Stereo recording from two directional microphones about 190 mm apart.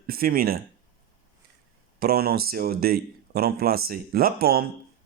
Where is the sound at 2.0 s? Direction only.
55° right (ahead or behind).